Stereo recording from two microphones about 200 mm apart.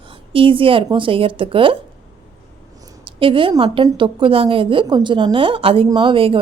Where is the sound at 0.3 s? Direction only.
25° right (ahead or behind).